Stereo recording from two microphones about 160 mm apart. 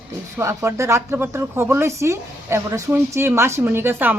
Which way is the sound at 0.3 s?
15° right (ahead or behind).